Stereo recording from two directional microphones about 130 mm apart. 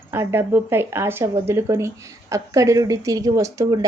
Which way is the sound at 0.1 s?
20° right (ahead or behind).